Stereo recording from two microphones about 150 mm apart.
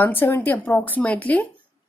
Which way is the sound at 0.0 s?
15° left (ahead or behind).